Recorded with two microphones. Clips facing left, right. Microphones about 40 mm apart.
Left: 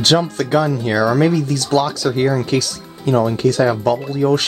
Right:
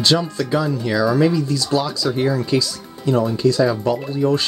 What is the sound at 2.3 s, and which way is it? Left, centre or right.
Speech, left.